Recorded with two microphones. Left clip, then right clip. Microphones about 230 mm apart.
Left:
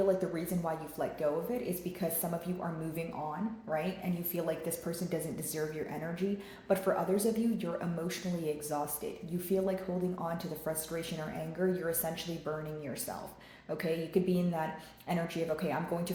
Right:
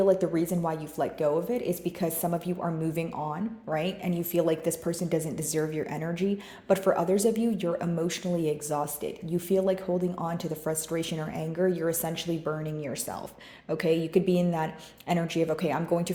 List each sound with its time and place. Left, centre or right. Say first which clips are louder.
0.0 s a woman's voice: right 7 dB; right